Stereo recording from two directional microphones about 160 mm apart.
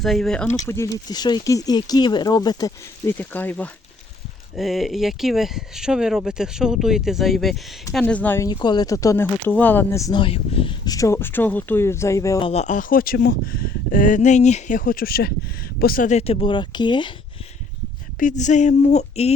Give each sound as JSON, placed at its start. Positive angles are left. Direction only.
{"t": 0.0, "sound": "speech", "side_deg": 0}
{"t": 0.5, "sound": "speech", "side_deg": 20}
{"t": 3.2, "sound": "speech", "side_deg": 10}
{"t": 4.5, "sound": "speech", "side_deg": 0}
{"t": 8.4, "sound": "speech", "side_deg": 25}
{"t": 10.2, "sound": "speech", "side_deg": 35}
{"t": 12.4, "sound": "speech", "side_deg": 40}
{"t": 18.2, "sound": "speech", "side_deg": 50}